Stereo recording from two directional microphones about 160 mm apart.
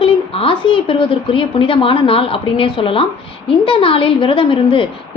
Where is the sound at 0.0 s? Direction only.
35° left (ahead or behind).